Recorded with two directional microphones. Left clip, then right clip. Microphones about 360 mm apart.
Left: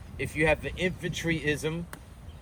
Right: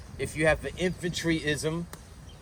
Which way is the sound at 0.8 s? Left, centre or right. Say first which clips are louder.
Even; centre.